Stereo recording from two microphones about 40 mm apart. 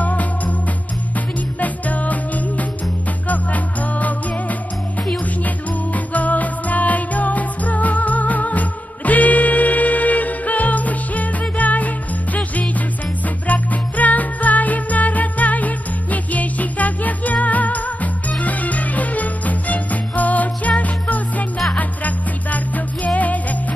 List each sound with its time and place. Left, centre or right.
0.0 s music: left
5.9 s music: left